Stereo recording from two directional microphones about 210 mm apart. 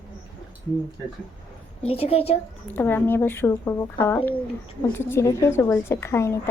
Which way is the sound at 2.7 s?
10° left (ahead or behind).